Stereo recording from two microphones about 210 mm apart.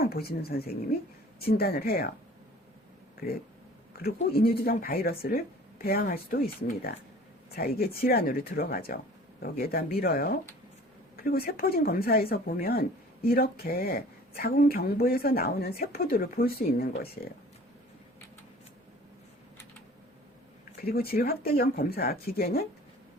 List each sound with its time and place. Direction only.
0.0 s a woman's voice: 45° left (ahead or behind)
3.2 s speech: 45° left (ahead or behind)
20.7 s speech: 45° left (ahead or behind)